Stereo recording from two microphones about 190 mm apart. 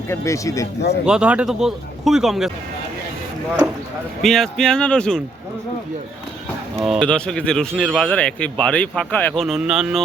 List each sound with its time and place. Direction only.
0.1 s speech: 15° left (ahead or behind)
1.0 s speech: 5° right (ahead or behind)
4.2 s speech: centre (ahead or behind)
6.8 s speech: 5° left (ahead or behind)